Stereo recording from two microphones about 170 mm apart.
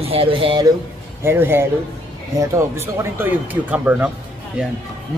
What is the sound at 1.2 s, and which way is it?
Speech, 15° right (ahead or behind).